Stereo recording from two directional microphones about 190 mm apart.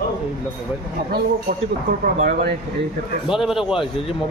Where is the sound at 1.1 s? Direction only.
55° right (ahead or behind).